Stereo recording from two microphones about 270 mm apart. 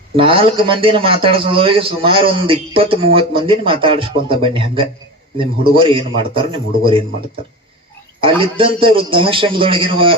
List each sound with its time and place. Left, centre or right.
0.2 s a man's voice: centre
8.2 s a man's voice: centre